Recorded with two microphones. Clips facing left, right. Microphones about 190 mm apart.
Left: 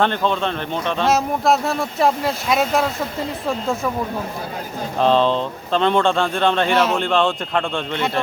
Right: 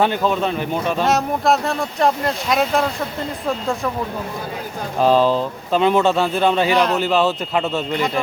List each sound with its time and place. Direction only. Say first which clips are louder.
0.0 s speech: right 1 dB; 5° right (ahead or behind)
4.9 s speech: right 1 dB; 5° right (ahead or behind)